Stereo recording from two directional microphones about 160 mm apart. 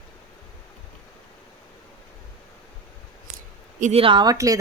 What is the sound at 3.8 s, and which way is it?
Speech, 40° right (ahead or behind).